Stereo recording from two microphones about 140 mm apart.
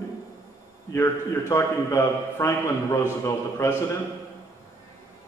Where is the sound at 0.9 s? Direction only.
20° left (ahead or behind).